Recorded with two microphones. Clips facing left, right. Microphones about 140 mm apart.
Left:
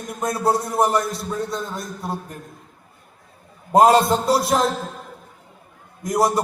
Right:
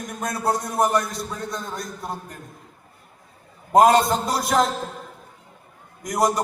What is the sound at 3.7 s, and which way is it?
Speech, 25° left (ahead or behind).